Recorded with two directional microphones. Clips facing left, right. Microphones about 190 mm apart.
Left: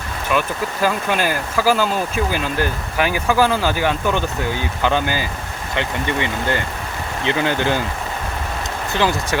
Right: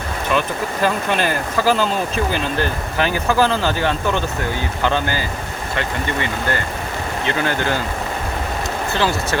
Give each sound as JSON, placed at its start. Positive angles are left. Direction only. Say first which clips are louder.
{"t": 0.3, "sound": "speech", "louder": "left 1 dB", "side_deg": 5}
{"t": 8.9, "sound": "speech", "louder": "left 1 dB", "side_deg": 15}